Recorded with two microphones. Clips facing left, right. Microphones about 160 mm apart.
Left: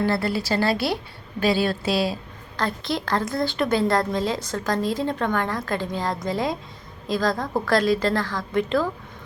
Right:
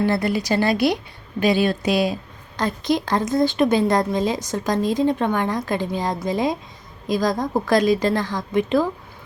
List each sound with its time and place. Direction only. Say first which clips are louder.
0.0 s a woman's voice: right 3 dB; 15° right (ahead or behind)